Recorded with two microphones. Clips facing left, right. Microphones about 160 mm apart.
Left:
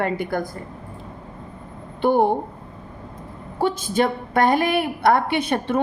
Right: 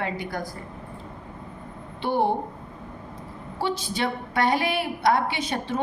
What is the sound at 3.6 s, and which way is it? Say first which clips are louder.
A woman's voice: left 6 dB; 50° left (ahead or behind).